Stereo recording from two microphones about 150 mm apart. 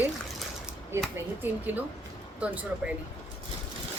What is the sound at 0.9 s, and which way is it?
Speech, 15° right (ahead or behind).